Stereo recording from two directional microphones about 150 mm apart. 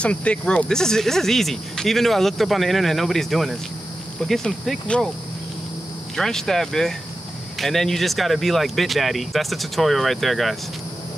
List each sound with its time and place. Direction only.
0.0 s speech: 10° left (ahead or behind)
6.1 s speech: 5° left (ahead or behind)